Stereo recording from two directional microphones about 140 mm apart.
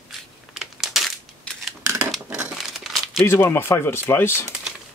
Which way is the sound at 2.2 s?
10° right (ahead or behind).